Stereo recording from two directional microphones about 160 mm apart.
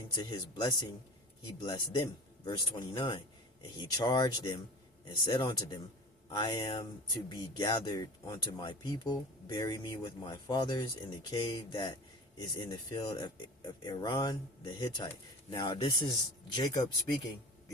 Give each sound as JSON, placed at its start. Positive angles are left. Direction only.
{"t": 0.1, "sound": "speech", "side_deg": 25}